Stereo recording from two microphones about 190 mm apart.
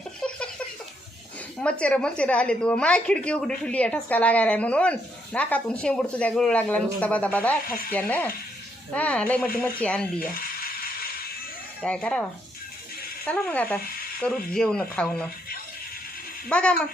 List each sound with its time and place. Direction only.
0.2 s a sound: 5° left (ahead or behind)
1.8 s a woman's voice: 5° left (ahead or behind)
10.2 s a sound: 50° left (ahead or behind)
11.8 s a woman's voice: 5° left (ahead or behind)
13.2 s a woman's voice: 10° left (ahead or behind)
16.5 s speech: 5° left (ahead or behind)